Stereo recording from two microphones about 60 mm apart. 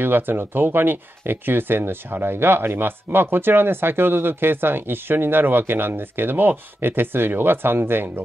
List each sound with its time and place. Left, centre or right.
0.0 s speech: right